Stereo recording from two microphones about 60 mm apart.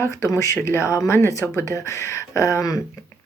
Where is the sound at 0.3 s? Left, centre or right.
Left.